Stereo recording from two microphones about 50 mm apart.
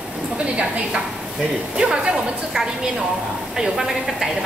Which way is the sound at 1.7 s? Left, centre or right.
Centre.